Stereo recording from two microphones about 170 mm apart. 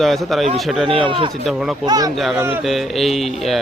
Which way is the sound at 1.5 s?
Centre (ahead or behind).